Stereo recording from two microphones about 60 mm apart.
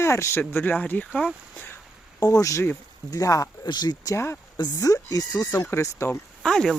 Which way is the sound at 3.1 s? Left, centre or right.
Left.